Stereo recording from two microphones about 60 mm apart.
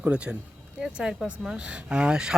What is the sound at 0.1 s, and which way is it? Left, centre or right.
Speech, centre.